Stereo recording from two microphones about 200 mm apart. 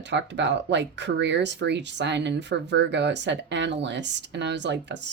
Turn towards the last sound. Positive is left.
turn(degrees=-60)  # may be behind; listen again after turning